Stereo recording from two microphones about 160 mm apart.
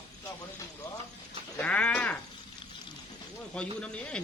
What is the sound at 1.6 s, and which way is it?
Livestock, 10° left (ahead or behind).